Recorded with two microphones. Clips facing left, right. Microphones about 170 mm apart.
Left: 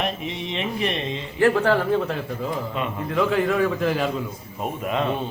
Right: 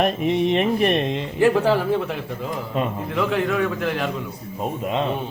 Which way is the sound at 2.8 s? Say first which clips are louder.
Right 7 dB; 45° right (ahead or behind).